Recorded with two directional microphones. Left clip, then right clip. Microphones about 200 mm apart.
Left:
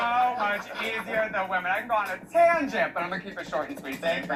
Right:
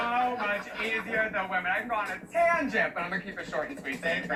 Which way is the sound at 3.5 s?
25° left (ahead or behind).